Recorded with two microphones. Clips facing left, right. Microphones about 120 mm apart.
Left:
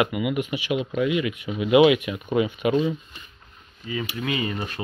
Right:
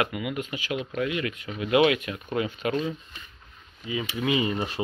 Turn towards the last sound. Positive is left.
turn(degrees=-20)  # may be behind; listen again after turning